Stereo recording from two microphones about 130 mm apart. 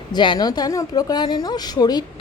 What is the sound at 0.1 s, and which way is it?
Speech, 35° left (ahead or behind).